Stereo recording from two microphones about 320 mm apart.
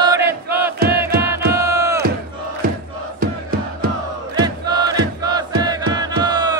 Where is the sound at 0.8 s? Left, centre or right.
Right.